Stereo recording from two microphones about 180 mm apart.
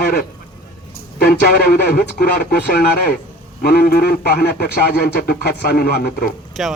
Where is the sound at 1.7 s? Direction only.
60° left (ahead or behind).